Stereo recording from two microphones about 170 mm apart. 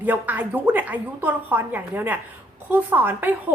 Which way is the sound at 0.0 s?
10° right (ahead or behind).